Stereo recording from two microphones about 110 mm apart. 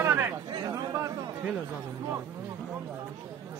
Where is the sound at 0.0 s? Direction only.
20° right (ahead or behind).